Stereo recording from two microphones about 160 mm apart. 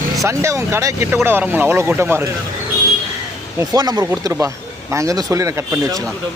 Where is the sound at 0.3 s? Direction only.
15° right (ahead or behind).